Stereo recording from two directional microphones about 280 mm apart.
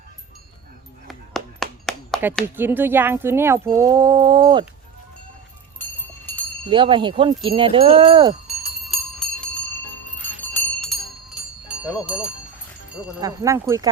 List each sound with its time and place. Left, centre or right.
1.0 s a sound: centre
3.8 s speech: centre
6.7 s speech: centre
8.9 s bell: centre
12.9 s speech: centre